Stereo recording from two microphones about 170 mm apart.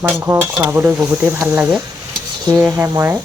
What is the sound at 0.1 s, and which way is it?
Dishes, 10° right (ahead or behind).